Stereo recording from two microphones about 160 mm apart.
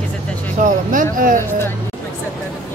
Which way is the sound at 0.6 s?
55° right (ahead or behind).